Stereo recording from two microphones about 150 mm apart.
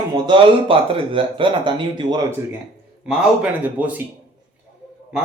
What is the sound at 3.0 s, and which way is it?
Speech, 10° right (ahead or behind).